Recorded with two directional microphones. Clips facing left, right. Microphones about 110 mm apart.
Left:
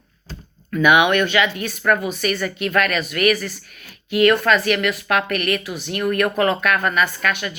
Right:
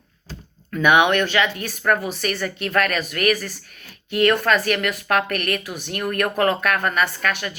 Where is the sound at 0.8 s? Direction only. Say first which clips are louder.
Left 1 dB; 35° right (ahead or behind).